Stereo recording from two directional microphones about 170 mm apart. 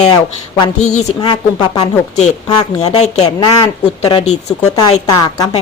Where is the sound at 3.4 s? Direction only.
25° left (ahead or behind).